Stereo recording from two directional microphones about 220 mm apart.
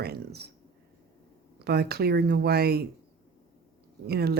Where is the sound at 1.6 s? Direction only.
45° right (ahead or behind).